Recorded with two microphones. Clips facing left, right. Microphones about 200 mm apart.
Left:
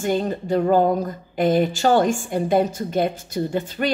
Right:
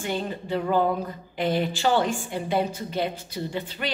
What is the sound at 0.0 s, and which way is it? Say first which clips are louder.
A woman's voice: left 7 dB; 45° left (ahead or behind).